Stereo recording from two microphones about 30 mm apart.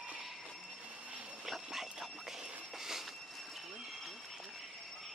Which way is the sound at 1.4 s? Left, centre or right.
Centre.